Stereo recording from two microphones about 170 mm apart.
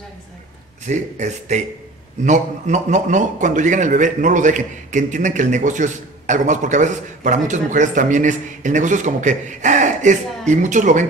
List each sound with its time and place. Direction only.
0.8 s a man's voice: 45° right (ahead or behind)